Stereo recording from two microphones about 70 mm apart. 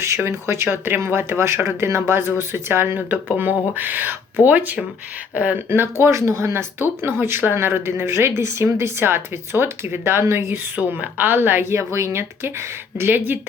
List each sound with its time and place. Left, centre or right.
0.3 s a woman's voice: right
5.5 s a woman's voice: right
6.1 s a woman's voice: right
10.8 s a woman's voice: right
13.0 s speech: right